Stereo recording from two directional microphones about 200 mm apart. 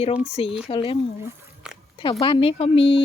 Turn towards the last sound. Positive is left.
turn(degrees=25)  # may be behind; listen again after turning